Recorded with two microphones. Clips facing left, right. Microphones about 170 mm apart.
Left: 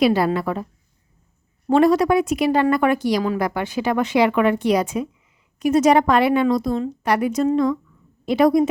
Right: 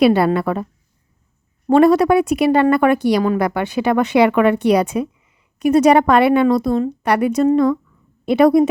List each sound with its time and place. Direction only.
0.0 s a woman's voice: 60° right (ahead or behind)
1.6 s a woman's voice: 60° right (ahead or behind)